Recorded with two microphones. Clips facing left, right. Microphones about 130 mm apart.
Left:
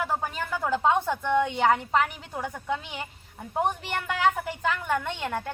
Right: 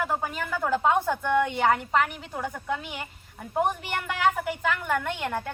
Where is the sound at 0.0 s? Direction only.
Centre (ahead or behind).